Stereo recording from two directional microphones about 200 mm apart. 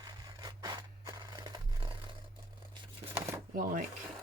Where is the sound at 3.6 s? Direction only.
45° right (ahead or behind).